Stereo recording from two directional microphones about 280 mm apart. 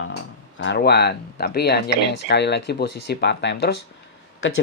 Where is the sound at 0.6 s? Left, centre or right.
Left.